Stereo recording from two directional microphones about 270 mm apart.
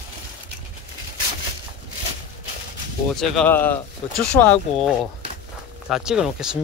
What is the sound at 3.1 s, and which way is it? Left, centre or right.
Speech, centre.